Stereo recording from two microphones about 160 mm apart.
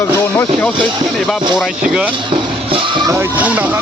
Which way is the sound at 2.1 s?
30° right (ahead or behind).